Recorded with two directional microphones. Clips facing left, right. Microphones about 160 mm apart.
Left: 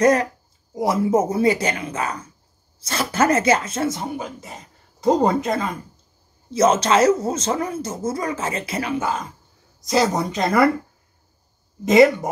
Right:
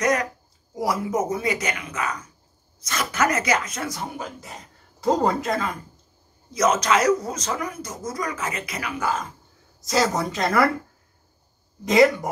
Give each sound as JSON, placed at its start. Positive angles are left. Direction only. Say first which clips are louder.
{"t": 0.0, "sound": "speech", "louder": "left 6 dB", "side_deg": 30}
{"t": 4.2, "sound": "speech", "louder": "left 3 dB", "side_deg": 0}
{"t": 5.0, "sound": "speech", "louder": "left 3 dB", "side_deg": 20}
{"t": 11.8, "sound": "speech", "louder": "left 3 dB", "side_deg": 0}